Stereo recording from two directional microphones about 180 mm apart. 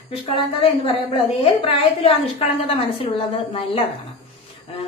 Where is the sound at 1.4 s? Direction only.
30° left (ahead or behind).